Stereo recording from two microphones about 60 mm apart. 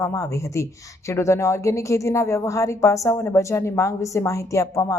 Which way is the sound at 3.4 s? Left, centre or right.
Left.